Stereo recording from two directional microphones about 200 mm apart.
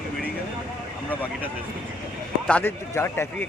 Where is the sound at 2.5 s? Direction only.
10° left (ahead or behind).